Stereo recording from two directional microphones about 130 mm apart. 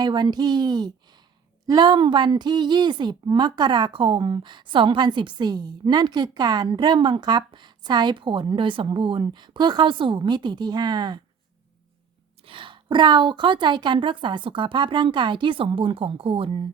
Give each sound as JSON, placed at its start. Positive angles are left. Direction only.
{"t": 0.0, "sound": "a woman's voice", "side_deg": -35}
{"t": 12.5, "sound": "a woman's voice", "side_deg": -40}